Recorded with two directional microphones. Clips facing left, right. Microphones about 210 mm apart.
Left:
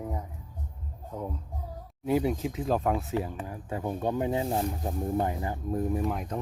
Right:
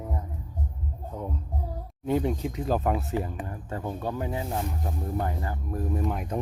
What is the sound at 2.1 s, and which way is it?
Speech, 5° left (ahead or behind).